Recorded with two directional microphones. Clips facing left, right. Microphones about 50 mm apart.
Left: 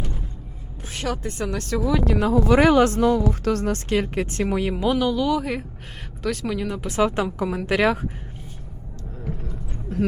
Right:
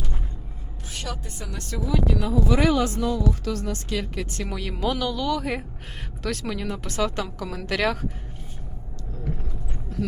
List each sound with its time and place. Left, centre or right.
0.9 s speech: left
4.4 s speech: left
4.7 s speech: centre
6.9 s speech: left
9.9 s a sound: left